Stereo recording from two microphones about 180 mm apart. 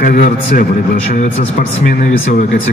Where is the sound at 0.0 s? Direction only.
50° left (ahead or behind).